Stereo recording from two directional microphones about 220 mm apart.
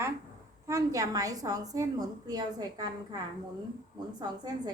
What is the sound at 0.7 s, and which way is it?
A woman's voice, 15° right (ahead or behind).